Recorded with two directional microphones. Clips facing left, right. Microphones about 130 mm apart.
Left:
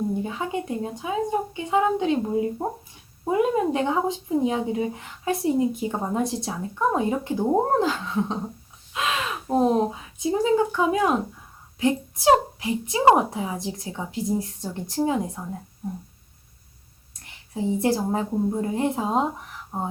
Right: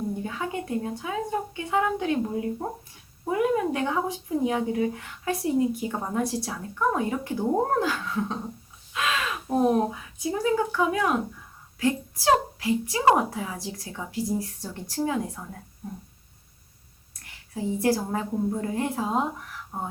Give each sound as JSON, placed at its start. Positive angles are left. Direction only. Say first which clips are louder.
{"t": 0.2, "sound": "speech", "louder": "left 3 dB", "side_deg": 20}
{"t": 17.2, "sound": "speech", "louder": "left 4 dB", "side_deg": 20}